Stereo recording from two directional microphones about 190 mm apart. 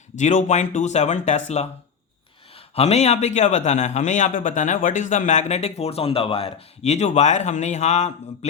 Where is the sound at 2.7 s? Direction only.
35° left (ahead or behind).